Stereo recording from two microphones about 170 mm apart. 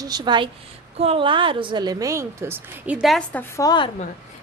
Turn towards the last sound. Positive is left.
turn(degrees=30)  # may be behind; listen again after turning